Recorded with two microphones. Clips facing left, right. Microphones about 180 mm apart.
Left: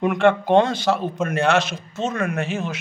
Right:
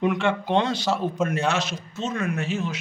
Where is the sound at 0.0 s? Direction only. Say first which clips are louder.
Left 5 dB; 50° left (ahead or behind).